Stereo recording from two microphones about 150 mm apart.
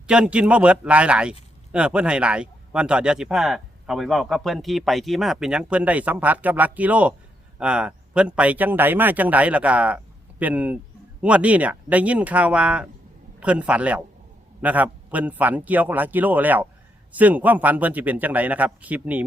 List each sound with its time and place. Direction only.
0.1 s a man's voice: 5° right (ahead or behind)